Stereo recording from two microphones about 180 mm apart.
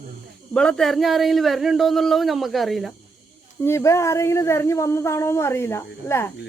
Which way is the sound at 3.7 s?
15° left (ahead or behind).